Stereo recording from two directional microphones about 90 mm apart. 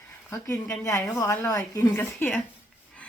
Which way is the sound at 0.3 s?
35° left (ahead or behind).